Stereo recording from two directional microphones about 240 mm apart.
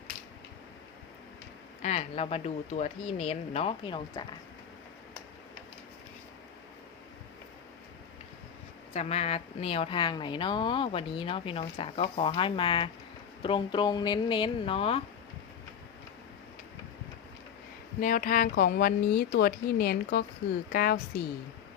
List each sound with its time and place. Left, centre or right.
1.8 s speech: left
8.9 s speech: left
18.0 s speech: left